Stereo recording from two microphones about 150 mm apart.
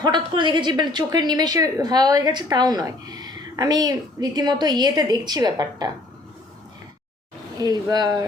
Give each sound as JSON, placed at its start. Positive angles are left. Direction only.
{"t": 0.2, "sound": "a woman's voice", "side_deg": -30}
{"t": 7.6, "sound": "a woman's voice", "side_deg": -25}